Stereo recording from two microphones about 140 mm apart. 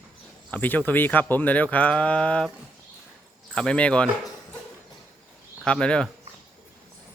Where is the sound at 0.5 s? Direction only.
10° left (ahead or behind).